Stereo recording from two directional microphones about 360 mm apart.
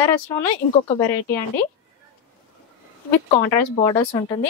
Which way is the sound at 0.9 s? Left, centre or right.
Centre.